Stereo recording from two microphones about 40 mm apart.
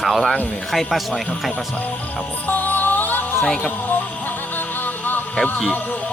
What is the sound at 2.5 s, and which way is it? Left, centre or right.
Music, left.